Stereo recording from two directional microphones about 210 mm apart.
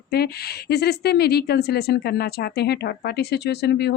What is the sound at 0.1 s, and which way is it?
Speech, 50° left (ahead or behind).